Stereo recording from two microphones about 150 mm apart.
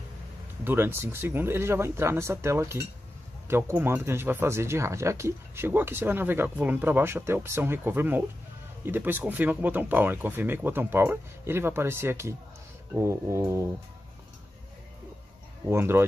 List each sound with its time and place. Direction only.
0.7 s speech: 15° right (ahead or behind)
15.7 s speech: 15° right (ahead or behind)